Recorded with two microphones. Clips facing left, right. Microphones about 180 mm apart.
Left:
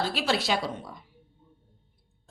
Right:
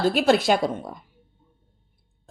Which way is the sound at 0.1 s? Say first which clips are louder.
Right 8 dB; 50° right (ahead or behind).